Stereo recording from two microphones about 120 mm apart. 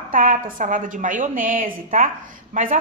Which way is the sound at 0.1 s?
90° right.